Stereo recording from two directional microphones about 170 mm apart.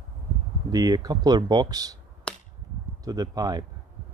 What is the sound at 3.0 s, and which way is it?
Speech, 20° right (ahead or behind).